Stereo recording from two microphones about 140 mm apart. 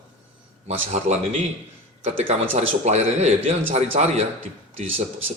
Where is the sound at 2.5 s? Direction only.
55° right (ahead or behind).